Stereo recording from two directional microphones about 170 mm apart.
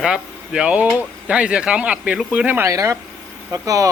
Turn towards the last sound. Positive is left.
turn(degrees=-20)  # may be behind; listen again after turning